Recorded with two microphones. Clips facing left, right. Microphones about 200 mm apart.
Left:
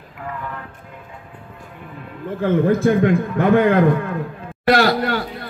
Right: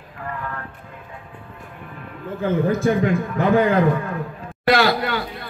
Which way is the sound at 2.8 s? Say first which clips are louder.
Left 3 dB; 55° left (ahead or behind).